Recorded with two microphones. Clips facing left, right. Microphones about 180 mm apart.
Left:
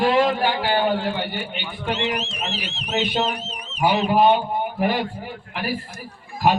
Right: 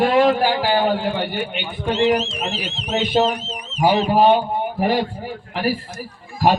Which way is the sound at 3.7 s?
65° left (ahead or behind).